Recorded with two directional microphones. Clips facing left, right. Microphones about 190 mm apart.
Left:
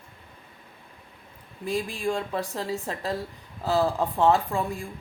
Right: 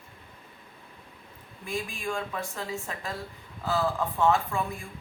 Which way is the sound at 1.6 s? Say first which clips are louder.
Left 6 dB; 35° left (ahead or behind).